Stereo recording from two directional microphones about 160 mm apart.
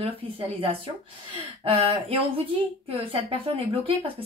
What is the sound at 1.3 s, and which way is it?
A woman's voice, 35° right (ahead or behind).